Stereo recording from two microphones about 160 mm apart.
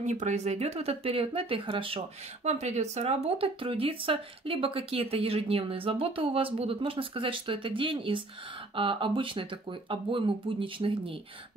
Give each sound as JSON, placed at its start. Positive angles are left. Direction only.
{"t": 0.0, "sound": "speech", "side_deg": -50}